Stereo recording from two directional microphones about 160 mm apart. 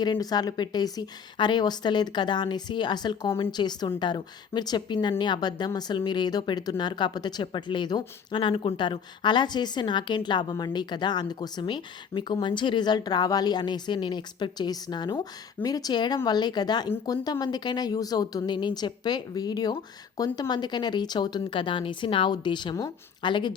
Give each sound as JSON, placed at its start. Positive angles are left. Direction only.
{"t": 0.0, "sound": "a woman's voice", "side_deg": 25}